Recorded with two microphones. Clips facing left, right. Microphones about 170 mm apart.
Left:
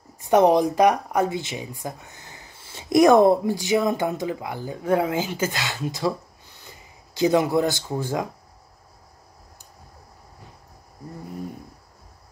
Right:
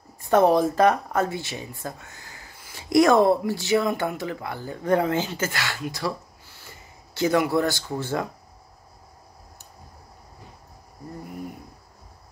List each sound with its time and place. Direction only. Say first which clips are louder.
0.2 s speech: left 1 dB; 15° left (ahead or behind)